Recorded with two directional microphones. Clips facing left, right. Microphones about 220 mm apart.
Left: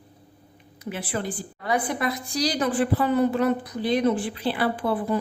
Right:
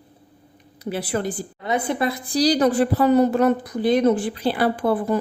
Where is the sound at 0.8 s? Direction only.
35° right (ahead or behind).